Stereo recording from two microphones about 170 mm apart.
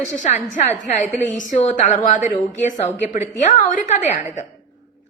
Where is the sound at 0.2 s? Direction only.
45° left (ahead or behind).